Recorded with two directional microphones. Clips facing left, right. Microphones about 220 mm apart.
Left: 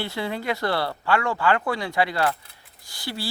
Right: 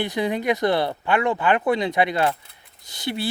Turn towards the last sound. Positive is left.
turn(degrees=-20)  # may be behind; listen again after turning